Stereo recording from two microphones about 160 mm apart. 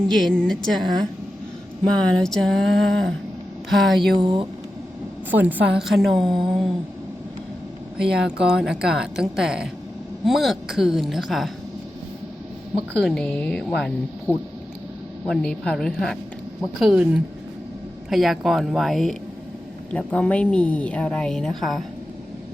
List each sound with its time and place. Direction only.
0.1 s a woman's voice: centre (ahead or behind)
2.2 s a woman's voice: centre (ahead or behind)
4.1 s speech: 30° right (ahead or behind)
5.3 s a woman's voice: 10° right (ahead or behind)
7.9 s a woman's voice: 5° right (ahead or behind)
12.7 s a woman's voice: 5° left (ahead or behind)